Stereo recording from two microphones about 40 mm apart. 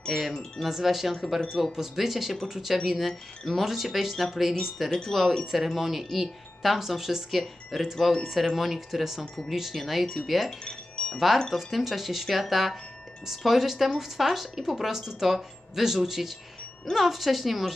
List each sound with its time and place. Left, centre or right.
0.1 s wind chime: centre
0.6 s speech: centre
3.6 s speech: centre
4.9 s speech: centre
10.6 s wind chime: centre
11.5 s speech: centre